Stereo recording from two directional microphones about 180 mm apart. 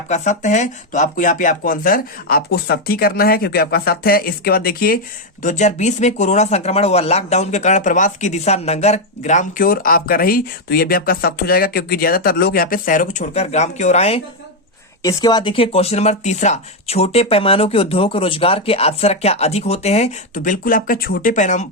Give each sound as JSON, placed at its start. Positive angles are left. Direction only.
{"t": 0.1, "sound": "speech", "side_deg": 40}
{"t": 5.4, "sound": "speech", "side_deg": 40}
{"t": 15.0, "sound": "speech", "side_deg": 25}